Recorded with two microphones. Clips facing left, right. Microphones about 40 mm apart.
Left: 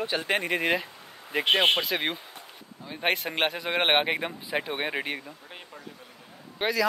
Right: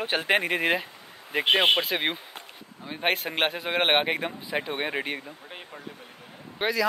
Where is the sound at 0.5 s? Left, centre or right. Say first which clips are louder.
Right 1 dB; centre.